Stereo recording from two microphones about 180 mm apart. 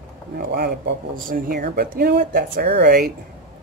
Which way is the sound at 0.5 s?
70° right (ahead or behind).